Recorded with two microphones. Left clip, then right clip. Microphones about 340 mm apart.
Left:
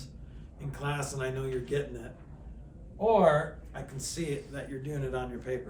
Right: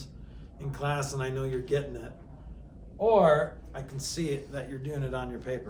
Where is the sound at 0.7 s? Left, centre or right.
Centre.